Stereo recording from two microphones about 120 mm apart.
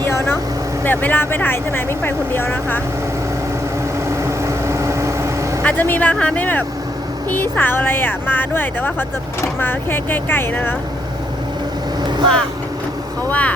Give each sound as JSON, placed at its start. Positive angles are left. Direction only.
{"t": 0.9, "sound": "speech", "side_deg": 15}
{"t": 4.1, "sound": "vehicle", "side_deg": -25}
{"t": 5.6, "sound": "speech", "side_deg": 15}
{"t": 12.0, "sound": "vehicle", "side_deg": -40}
{"t": 13.2, "sound": "speech", "side_deg": 10}